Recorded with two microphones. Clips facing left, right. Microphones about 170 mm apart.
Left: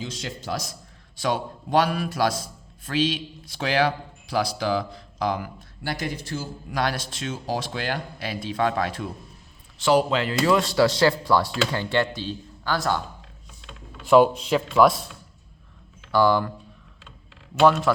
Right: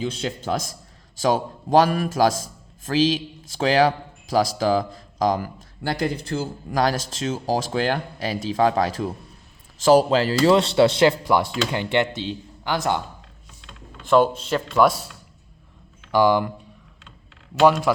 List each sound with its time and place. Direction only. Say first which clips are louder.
0.0 s a man's voice: right 6 dB; 55° right (ahead or behind); by 5.6 s 40° right (ahead or behind)
6.3 s a man's voice: right 5 dB; 60° right (ahead or behind)
6.7 s speech: right 5 dB; 40° right (ahead or behind); by 13.0 s 20° right (ahead or behind)
13.9 s speech: left 1 dB; 5° left (ahead or behind)
16.1 s speech: right 2 dB; 15° right (ahead or behind)
17.6 s speech: right 1 dB; 10° right (ahead or behind)